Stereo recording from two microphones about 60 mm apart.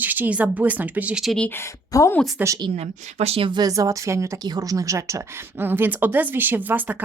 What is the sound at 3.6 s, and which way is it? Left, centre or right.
Speech, right.